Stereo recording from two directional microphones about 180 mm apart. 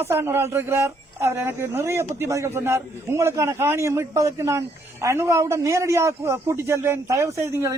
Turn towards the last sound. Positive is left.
turn(degrees=-15)  # may be behind; listen again after turning